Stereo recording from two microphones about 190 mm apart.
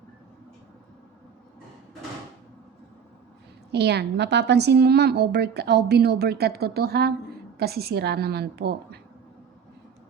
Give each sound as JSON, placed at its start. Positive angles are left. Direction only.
{"t": 3.7, "sound": "a woman's voice", "side_deg": -60}